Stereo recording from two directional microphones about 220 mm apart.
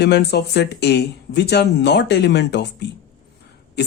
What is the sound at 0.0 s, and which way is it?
Speech, 50° left (ahead or behind).